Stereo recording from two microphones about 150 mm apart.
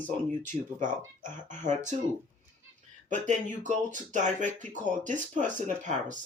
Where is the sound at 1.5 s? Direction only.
55° right (ahead or behind).